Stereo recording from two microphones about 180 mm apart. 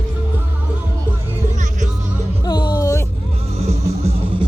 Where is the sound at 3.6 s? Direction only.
35° right (ahead or behind).